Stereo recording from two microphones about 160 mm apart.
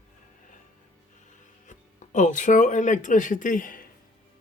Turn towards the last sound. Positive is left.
turn(degrees=60)  # may be behind; listen again after turning